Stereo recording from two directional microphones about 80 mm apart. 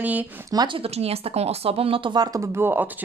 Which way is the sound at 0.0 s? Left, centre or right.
Right.